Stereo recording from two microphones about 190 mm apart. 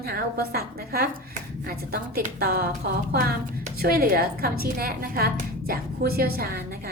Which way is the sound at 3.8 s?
55° right (ahead or behind).